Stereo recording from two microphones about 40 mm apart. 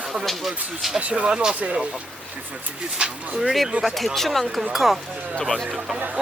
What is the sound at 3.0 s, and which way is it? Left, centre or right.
Speech, right.